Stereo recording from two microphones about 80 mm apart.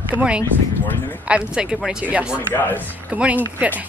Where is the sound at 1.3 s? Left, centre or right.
Centre.